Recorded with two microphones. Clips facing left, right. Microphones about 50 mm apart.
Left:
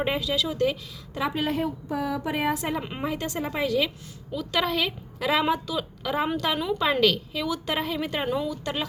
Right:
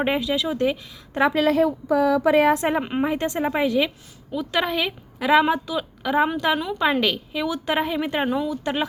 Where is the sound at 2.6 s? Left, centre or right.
Right.